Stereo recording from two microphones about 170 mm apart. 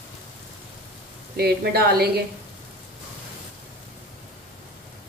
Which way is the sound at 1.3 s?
70° right (ahead or behind).